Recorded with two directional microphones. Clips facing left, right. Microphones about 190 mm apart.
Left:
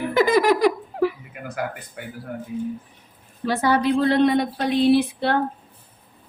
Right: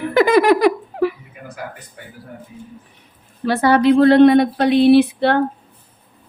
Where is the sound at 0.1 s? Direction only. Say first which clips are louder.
Right 5 dB; 65° right (ahead or behind).